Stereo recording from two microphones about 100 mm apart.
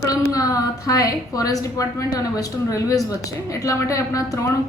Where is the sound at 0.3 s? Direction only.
35° left (ahead or behind).